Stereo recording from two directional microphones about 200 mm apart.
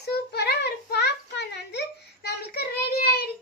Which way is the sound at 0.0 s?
55° left (ahead or behind).